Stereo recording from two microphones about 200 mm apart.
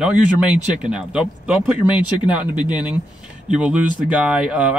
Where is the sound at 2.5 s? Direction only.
20° left (ahead or behind).